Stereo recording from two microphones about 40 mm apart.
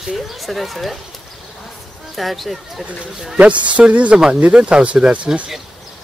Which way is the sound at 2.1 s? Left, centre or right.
Centre.